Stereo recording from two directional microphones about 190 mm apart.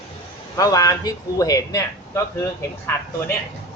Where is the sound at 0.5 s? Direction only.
20° left (ahead or behind).